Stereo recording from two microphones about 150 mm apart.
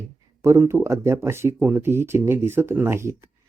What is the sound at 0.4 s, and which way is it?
Speech, 20° right (ahead or behind).